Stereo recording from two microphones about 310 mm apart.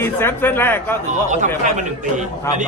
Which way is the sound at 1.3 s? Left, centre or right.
Right.